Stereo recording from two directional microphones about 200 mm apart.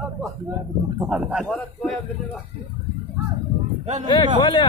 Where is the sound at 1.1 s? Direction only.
5° right (ahead or behind).